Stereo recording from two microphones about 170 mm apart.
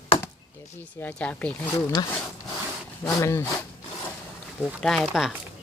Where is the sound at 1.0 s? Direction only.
10° left (ahead or behind).